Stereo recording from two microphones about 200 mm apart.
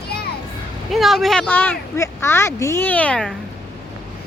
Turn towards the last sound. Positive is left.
turn(degrees=5)  # may be behind; listen again after turning